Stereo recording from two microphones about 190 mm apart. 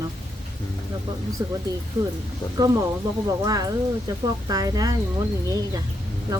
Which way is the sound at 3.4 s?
20° right (ahead or behind).